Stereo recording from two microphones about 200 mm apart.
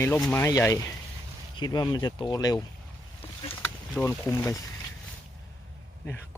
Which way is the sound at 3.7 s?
10° left (ahead or behind).